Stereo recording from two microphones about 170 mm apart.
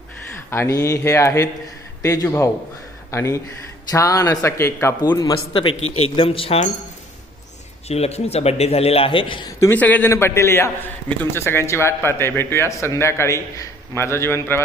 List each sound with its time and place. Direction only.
0.5 s a man's voice: 15° left (ahead or behind); by 6.7 s 35° left (ahead or behind)
7.9 s speech: 40° left (ahead or behind)
9.6 s a man's voice: 10° left (ahead or behind)